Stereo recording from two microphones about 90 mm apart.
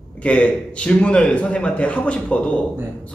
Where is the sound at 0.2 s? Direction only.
15° left (ahead or behind).